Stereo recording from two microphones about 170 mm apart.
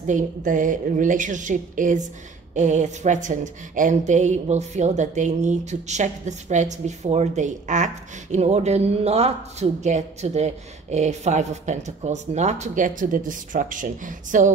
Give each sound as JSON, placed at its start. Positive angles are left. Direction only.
{"t": 0.0, "sound": "a woman's voice", "side_deg": -50}